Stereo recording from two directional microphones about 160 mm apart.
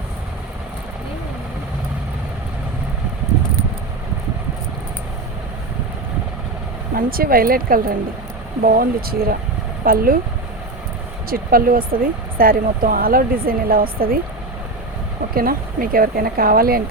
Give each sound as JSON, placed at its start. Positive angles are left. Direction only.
{"t": 6.9, "sound": "speech", "side_deg": -65}
{"t": 11.3, "sound": "speech", "side_deg": -65}
{"t": 15.4, "sound": "speech", "side_deg": -65}